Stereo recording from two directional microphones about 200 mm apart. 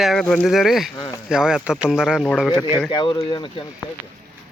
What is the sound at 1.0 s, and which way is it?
Speech, 20° left (ahead or behind).